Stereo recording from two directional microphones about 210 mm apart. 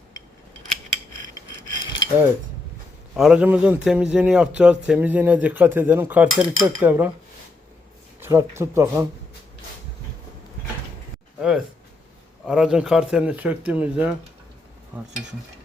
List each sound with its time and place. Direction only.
1.6 s mechanisms: 20° left (ahead or behind)
3.2 s a man's voice: 5° right (ahead or behind)
8.2 s a man's voice: 15° right (ahead or behind)
11.3 s a sound: 5° right (ahead or behind)
12.5 s speech: 5° right (ahead or behind)